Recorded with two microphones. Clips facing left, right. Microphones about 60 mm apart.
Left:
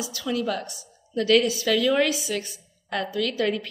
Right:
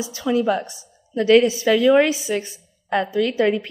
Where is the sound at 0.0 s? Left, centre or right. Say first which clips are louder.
Right 7 dB; right.